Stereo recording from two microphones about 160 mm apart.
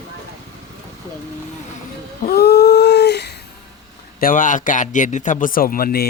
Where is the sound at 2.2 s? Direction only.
80° left.